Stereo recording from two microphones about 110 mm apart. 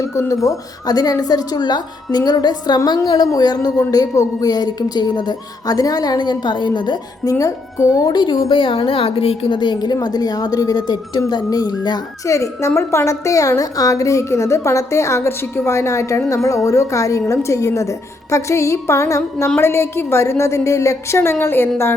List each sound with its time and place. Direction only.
0.0 s a woman's voice: 30° left (ahead or behind); by 7.0 s 45° left (ahead or behind)
7.3 s a woman's voice: 30° left (ahead or behind)